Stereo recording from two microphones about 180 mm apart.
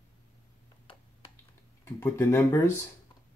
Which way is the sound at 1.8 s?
15° left (ahead or behind).